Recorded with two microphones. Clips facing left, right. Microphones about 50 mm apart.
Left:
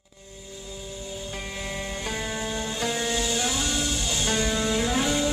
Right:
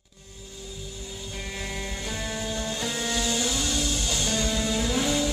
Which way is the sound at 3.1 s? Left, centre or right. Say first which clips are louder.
Left 1 dB; centre.